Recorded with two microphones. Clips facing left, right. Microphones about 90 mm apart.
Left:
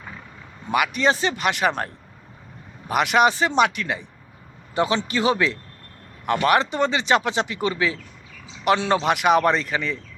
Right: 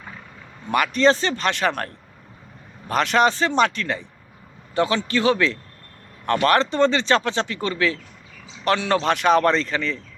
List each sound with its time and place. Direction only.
0.7 s speech: 10° left (ahead or behind)